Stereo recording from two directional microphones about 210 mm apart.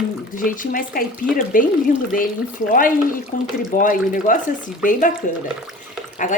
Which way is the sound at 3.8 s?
40° left (ahead or behind).